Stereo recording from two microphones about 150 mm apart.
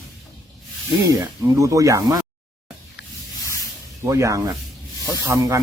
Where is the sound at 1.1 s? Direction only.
20° right (ahead or behind).